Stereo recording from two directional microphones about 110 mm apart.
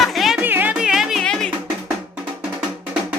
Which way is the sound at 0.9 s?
5° right (ahead or behind).